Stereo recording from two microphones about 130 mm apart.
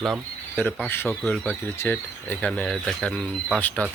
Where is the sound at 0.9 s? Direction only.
15° left (ahead or behind).